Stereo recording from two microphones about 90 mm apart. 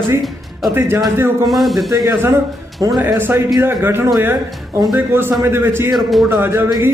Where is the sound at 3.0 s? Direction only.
25° right (ahead or behind).